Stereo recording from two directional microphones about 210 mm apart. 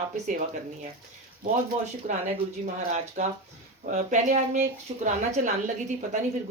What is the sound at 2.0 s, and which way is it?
Speech, 35° right (ahead or behind).